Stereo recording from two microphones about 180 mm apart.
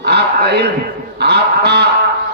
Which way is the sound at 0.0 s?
65° right (ahead or behind).